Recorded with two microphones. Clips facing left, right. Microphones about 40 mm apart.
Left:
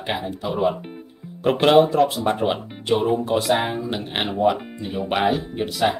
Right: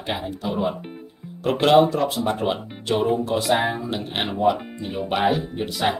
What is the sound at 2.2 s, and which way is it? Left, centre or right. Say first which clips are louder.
Speech: left 2 dB; centre.